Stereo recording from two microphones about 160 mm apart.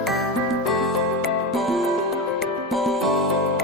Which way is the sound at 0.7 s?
Centre (ahead or behind).